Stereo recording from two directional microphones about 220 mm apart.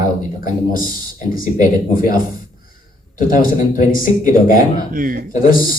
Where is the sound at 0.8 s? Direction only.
40° left (ahead or behind).